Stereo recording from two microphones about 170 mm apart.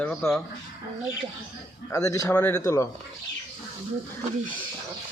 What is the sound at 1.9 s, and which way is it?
Speech, 20° left (ahead or behind).